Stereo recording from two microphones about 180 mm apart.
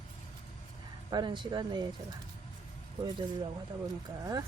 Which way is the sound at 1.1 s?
25° right (ahead or behind).